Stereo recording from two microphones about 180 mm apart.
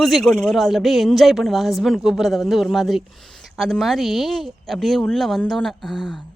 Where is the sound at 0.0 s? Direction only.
Centre (ahead or behind).